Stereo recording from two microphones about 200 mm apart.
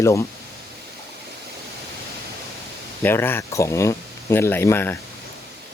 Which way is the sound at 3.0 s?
10° left (ahead or behind).